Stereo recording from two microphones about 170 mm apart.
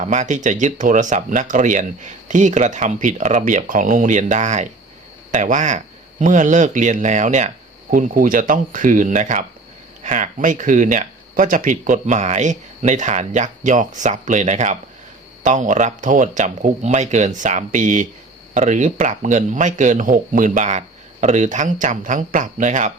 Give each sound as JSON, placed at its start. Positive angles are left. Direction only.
{"t": 0.0, "sound": "speech", "side_deg": -45}